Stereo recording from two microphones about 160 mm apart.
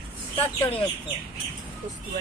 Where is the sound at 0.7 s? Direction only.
30° left (ahead or behind).